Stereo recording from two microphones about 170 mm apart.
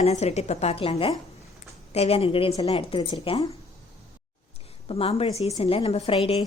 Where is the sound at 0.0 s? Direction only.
40° left (ahead or behind).